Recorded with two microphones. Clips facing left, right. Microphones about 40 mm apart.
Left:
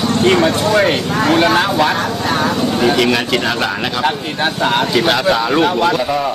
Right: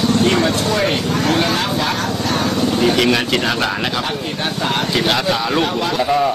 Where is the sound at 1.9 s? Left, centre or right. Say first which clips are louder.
Left 3 dB; centre.